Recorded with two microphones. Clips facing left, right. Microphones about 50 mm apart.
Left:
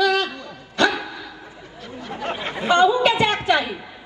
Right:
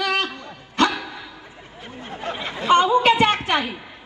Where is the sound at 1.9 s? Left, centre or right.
Right.